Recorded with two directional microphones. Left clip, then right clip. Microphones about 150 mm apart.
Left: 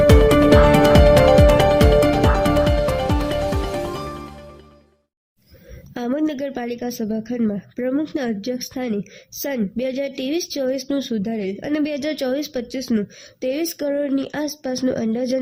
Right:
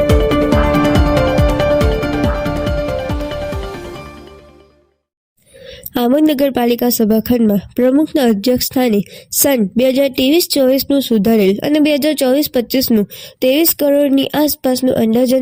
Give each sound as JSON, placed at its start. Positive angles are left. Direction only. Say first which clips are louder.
{"t": 0.1, "sound": "music", "louder": "even", "side_deg": 0}
{"t": 6.1, "sound": "speech", "louder": "right 11 dB", "side_deg": -35}
{"t": 11.2, "sound": "speech", "louder": "right 13 dB", "side_deg": -45}